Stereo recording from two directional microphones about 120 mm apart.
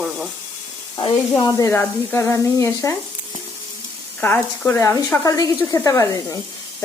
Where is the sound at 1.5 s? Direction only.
20° left (ahead or behind).